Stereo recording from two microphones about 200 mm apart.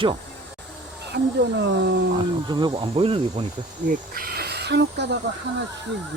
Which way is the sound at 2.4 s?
20° right (ahead or behind).